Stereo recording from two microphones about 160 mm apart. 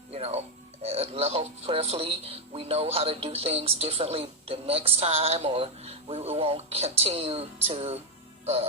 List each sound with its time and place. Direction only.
0.1 s speech: 40° right (ahead or behind)